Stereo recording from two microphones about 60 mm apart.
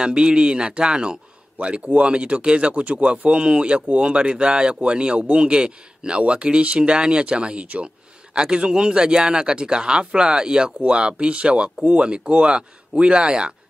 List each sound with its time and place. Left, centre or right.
0.0 s a man's voice: centre